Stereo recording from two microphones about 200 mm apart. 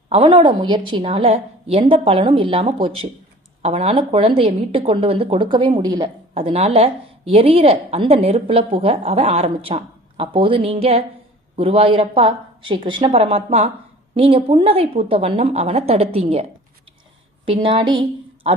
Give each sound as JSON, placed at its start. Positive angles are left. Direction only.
{"t": 0.1, "sound": "a woman's voice", "side_deg": -25}
{"t": 6.3, "sound": "a woman's voice", "side_deg": -30}